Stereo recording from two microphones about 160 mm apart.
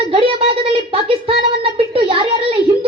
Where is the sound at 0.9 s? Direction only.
35° right (ahead or behind).